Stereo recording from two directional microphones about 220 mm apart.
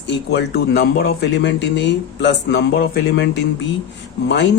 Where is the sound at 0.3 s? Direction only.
45° left (ahead or behind).